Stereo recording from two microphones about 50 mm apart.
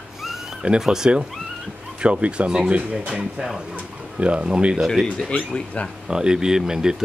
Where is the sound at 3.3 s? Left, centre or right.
Centre.